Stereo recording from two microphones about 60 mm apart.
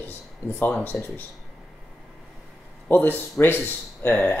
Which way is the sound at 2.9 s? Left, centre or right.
Left.